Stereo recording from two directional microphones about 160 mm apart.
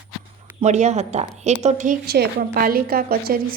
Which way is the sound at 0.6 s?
45° right (ahead or behind).